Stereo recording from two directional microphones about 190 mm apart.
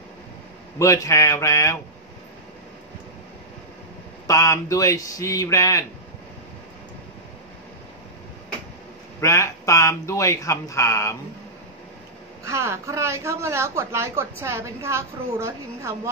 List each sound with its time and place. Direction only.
0.7 s speech: 15° left (ahead or behind)
4.3 s speech: 15° left (ahead or behind)
9.2 s speech: 15° left (ahead or behind)
12.4 s speech: 15° right (ahead or behind)